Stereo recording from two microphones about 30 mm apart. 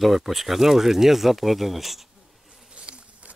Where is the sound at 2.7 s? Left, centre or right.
Right.